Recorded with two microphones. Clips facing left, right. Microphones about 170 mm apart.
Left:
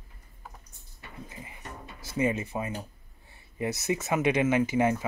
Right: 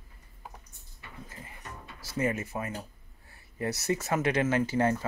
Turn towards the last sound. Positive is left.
turn(degrees=15)  # may be behind; listen again after turning